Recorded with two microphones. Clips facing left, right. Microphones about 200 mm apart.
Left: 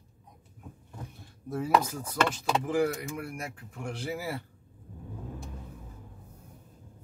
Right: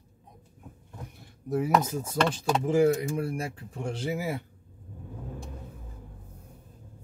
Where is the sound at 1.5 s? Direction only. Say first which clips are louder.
Right 2 dB; 20° right (ahead or behind).